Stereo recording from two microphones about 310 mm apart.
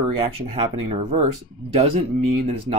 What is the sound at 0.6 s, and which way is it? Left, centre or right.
Speech, centre.